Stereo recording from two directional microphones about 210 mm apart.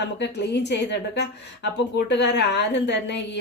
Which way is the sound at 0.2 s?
55° left (ahead or behind).